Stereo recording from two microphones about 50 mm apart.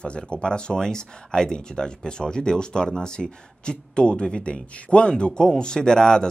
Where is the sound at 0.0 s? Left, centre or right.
Centre.